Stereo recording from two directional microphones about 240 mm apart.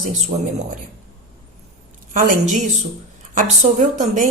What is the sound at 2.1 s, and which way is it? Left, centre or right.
A woman's voice, right.